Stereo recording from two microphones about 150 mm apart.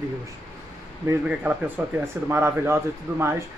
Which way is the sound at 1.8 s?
10° right (ahead or behind).